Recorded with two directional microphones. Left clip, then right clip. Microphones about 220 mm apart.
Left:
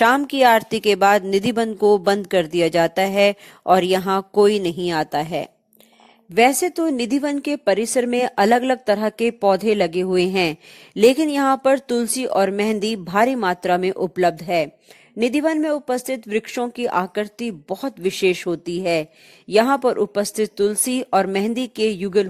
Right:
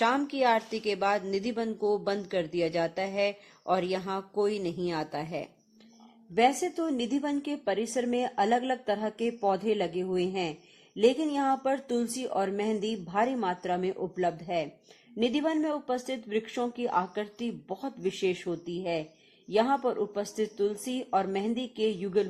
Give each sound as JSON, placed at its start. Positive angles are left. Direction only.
{"t": 0.0, "sound": "a woman's voice", "side_deg": 45}